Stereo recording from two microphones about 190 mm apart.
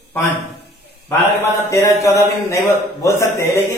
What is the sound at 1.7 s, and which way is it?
A man's voice, 15° left (ahead or behind).